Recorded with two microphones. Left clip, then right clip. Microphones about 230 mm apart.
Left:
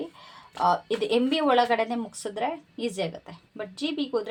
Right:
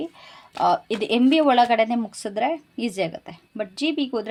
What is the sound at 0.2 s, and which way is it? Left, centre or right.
Speech, right.